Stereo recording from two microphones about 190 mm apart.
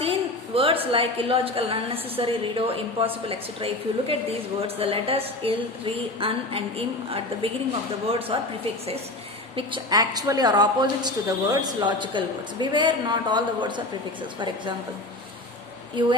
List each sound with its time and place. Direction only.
0.0 s a woman's voice: 30° right (ahead or behind)
9.6 s a woman's voice: 25° right (ahead or behind)
16.0 s a woman's voice: 25° right (ahead or behind)